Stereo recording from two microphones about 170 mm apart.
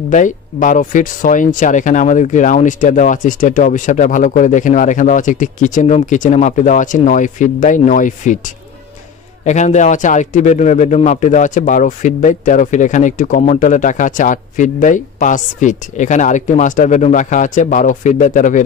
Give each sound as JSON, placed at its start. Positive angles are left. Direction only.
{"t": 0.1, "sound": "a man's voice", "side_deg": 50}
{"t": 9.4, "sound": "a man's voice", "side_deg": 45}